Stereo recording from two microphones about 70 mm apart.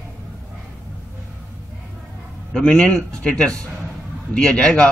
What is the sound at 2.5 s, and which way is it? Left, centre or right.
A man's voice, centre.